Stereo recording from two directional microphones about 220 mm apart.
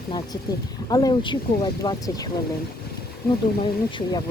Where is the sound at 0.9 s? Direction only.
15° left (ahead or behind).